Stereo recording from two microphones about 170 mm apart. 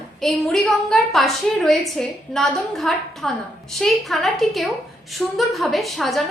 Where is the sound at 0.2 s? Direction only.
Centre (ahead or behind).